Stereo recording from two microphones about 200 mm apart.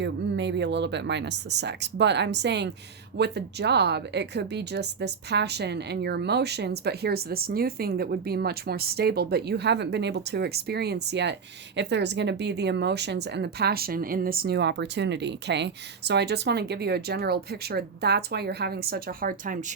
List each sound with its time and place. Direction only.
0.0 s speech: 60° right (ahead or behind); by 19.7 s 45° right (ahead or behind)